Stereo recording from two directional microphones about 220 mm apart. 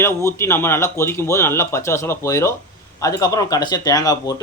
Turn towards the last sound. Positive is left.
turn(degrees=15)  # may be behind; listen again after turning